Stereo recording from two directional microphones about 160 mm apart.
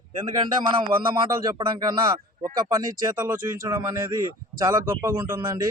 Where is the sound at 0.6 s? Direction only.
25° right (ahead or behind).